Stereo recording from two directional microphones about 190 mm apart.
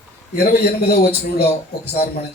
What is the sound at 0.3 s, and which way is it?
A man's voice, 60° left (ahead or behind).